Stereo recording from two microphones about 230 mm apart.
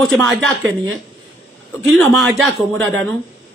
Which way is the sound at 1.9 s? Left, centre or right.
Centre.